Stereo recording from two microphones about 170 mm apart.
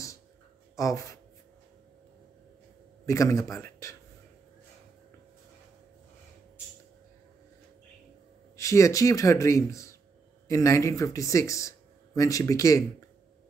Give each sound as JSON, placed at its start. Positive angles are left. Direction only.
{"t": 0.7, "sound": "speech", "side_deg": 20}
{"t": 3.1, "sound": "speech", "side_deg": 20}
{"t": 8.5, "sound": "speech", "side_deg": 20}